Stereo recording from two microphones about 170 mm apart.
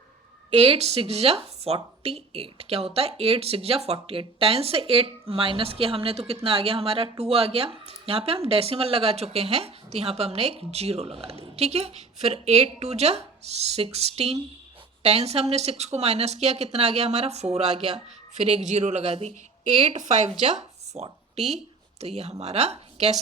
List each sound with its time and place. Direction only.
0.5 s speech: 35° right (ahead or behind)